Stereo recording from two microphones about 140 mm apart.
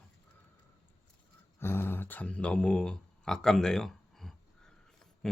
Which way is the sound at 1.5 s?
15° left (ahead or behind).